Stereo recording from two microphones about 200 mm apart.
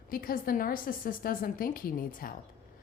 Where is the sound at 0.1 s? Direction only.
45° left (ahead or behind).